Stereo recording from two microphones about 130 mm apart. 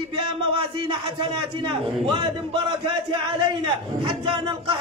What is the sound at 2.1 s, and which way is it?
Speech, 40° right (ahead or behind).